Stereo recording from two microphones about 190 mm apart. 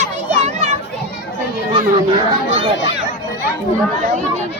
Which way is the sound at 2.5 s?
30° right (ahead or behind).